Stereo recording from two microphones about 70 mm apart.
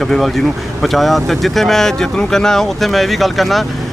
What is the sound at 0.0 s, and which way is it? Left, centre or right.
Speech, centre.